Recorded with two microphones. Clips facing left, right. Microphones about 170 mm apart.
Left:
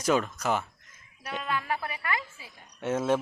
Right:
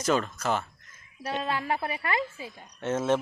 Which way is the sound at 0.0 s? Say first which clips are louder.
Even; 10° left (ahead or behind).